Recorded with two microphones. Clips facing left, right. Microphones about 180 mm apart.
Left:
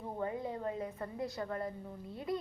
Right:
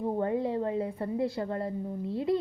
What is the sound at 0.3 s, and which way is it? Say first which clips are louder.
A woman's voice: right 9 dB; 30° right (ahead or behind).